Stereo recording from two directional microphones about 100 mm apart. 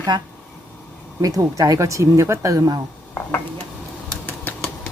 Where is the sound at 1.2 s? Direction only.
35° right (ahead or behind).